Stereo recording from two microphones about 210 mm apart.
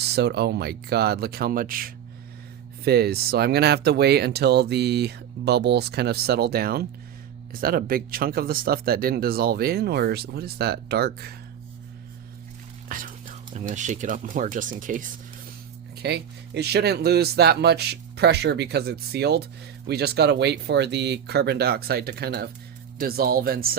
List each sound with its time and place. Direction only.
0.0 s speech: 50° right (ahead or behind)
12.9 s speech: 40° right (ahead or behind)
16.0 s speech: 50° right (ahead or behind)